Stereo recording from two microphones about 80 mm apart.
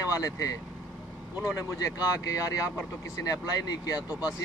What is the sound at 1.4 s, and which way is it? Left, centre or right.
Speech, left.